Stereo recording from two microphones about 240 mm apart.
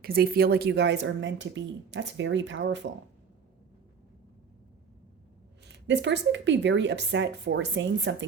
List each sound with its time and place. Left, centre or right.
0.0 s speech: right
5.6 s speech: right